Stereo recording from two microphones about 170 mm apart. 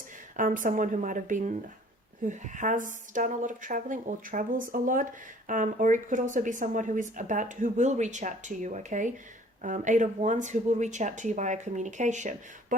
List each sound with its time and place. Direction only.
0.3 s speech: 50° right (ahead or behind)